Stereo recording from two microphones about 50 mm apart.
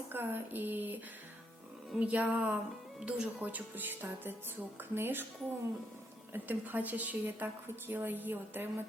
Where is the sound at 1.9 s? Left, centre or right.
Right.